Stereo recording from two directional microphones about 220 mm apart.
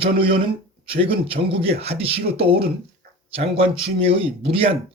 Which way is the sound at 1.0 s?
25° right (ahead or behind).